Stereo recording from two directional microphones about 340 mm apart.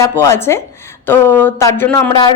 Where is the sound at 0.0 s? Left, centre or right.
Centre.